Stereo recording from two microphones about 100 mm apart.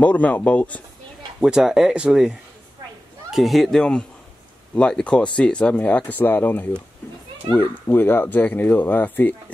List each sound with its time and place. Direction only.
0.0 s speech: 15° left (ahead or behind)
1.4 s speech: 5° right (ahead or behind); by 6.8 s 15° left (ahead or behind)
7.9 s speech: 20° left (ahead or behind)